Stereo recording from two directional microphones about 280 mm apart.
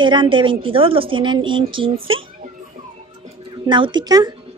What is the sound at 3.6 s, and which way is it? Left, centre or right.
Speech, centre.